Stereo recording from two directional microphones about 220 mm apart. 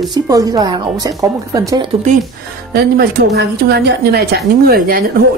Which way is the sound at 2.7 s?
45° right (ahead or behind).